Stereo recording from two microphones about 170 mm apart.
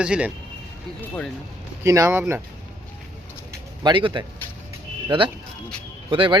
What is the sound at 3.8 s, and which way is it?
A man's voice, 30° right (ahead or behind).